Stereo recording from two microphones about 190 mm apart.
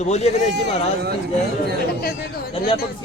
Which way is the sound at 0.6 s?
60° right (ahead or behind).